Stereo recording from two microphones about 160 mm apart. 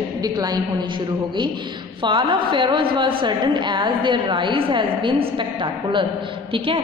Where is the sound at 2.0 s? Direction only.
30° right (ahead or behind).